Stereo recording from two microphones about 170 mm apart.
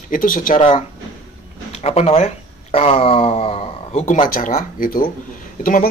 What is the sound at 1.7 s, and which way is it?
Speech, 40° left (ahead or behind).